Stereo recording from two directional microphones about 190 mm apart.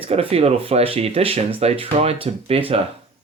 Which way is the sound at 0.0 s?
30° right (ahead or behind).